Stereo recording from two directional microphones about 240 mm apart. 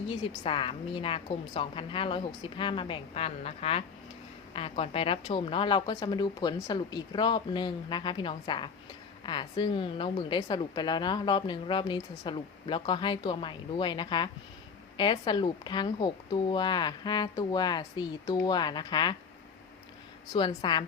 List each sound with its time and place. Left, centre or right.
0.1 s a woman's voice: left
20.3 s a woman's voice: centre